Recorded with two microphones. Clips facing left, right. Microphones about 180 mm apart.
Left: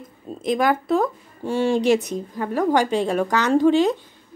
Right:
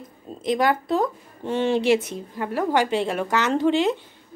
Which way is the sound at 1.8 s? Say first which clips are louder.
Left 1 dB; 40° left (ahead or behind).